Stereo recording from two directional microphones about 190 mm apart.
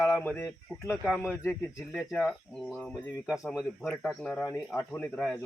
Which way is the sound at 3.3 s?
Centre (ahead or behind).